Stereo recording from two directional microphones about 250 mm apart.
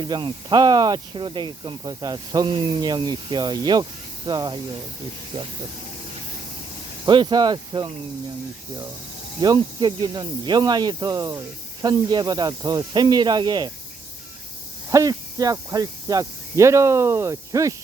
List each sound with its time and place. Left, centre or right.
0.0 s speech: centre
7.0 s speech: centre
9.4 s speech: centre
14.8 s speech: centre